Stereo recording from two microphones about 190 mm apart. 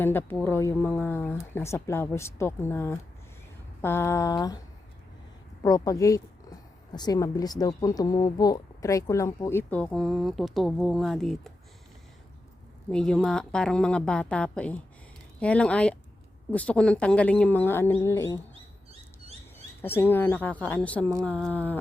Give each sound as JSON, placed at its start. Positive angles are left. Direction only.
{"t": 0.0, "sound": "speech", "side_deg": 10}
{"t": 5.6, "sound": "speech", "side_deg": 20}
{"t": 12.9, "sound": "a woman's voice", "side_deg": 5}
{"t": 19.8, "sound": "speech", "side_deg": 10}